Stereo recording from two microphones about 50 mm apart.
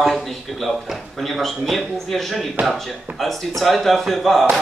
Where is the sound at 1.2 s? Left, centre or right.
Centre.